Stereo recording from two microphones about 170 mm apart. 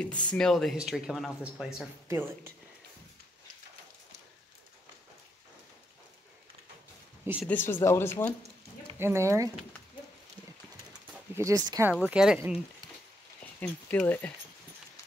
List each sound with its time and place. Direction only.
0.3 s speech: 5° left (ahead or behind)
2.0 s speech: 15° right (ahead or behind)
7.4 s speech: 10° left (ahead or behind)
8.9 s speech: 15° right (ahead or behind)
10.9 s bird: 20° right (ahead or behind)
11.9 s speech: 5° right (ahead or behind)
13.6 s speech: 10° left (ahead or behind)